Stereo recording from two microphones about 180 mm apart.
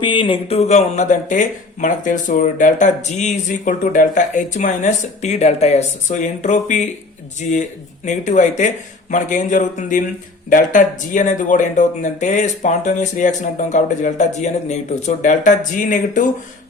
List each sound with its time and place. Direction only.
0.0 s speech: 25° left (ahead or behind); by 16.2 s 45° left (ahead or behind)